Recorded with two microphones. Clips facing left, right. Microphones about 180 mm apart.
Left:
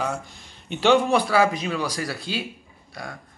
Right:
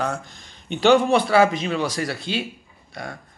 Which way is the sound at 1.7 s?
25° right (ahead or behind).